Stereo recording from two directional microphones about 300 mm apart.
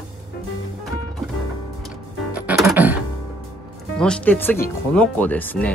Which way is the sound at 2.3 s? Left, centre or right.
Centre.